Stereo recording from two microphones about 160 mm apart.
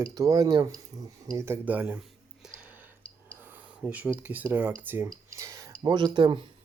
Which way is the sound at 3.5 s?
10° right (ahead or behind).